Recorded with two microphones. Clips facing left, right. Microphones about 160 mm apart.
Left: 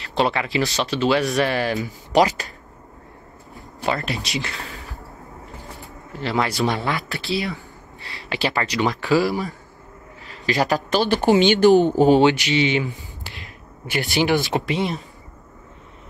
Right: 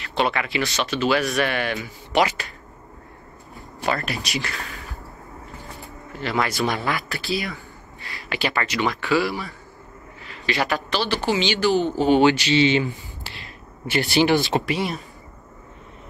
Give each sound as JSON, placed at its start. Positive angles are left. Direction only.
{"t": 0.1, "sound": "speech", "side_deg": 30}
{"t": 3.8, "sound": "speech", "side_deg": 20}
{"t": 6.1, "sound": "speech", "side_deg": 30}
{"t": 9.0, "sound": "speech", "side_deg": 40}
{"t": 12.2, "sound": "speech", "side_deg": 20}